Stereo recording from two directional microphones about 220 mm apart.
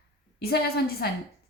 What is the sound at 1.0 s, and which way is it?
Speech, 45° left (ahead or behind).